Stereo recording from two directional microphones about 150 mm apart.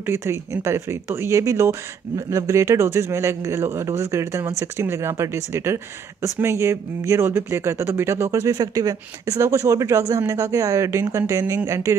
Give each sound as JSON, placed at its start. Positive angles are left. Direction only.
{"t": 0.0, "sound": "speech", "side_deg": -15}